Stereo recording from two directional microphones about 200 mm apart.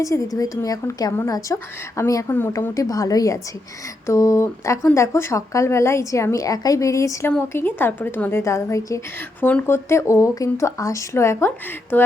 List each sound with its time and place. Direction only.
0.0 s speech: 15° left (ahead or behind)